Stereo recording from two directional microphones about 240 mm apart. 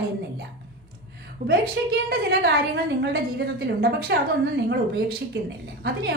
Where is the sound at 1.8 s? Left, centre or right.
Right.